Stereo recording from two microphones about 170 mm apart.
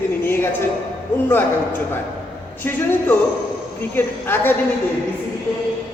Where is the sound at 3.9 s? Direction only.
15° left (ahead or behind).